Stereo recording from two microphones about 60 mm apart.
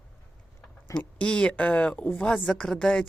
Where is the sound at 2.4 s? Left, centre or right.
Centre.